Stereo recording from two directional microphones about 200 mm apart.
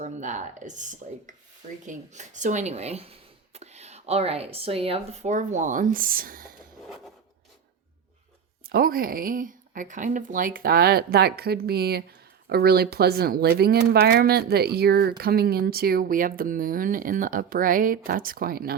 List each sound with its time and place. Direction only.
0.0 s speech: 40° right (ahead or behind)
8.6 s speech: 45° right (ahead or behind)